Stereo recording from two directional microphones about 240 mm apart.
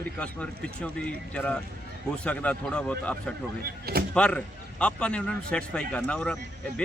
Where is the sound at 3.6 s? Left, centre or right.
Right.